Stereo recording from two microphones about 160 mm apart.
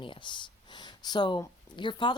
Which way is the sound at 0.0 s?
30° left (ahead or behind).